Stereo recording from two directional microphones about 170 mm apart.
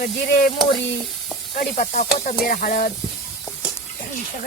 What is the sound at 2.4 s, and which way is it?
Speech, 60° left (ahead or behind).